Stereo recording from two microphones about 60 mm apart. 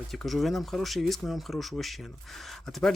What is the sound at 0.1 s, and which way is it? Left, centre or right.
Speech, centre.